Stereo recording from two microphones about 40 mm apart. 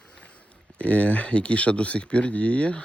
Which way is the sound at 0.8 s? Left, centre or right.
Left.